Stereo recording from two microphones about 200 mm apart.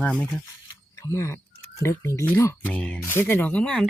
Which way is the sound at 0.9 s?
15° left (ahead or behind).